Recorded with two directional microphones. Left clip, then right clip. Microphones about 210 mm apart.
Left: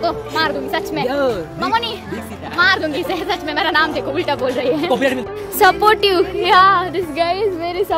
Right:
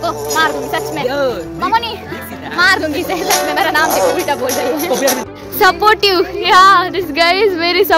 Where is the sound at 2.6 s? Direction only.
20° right (ahead or behind).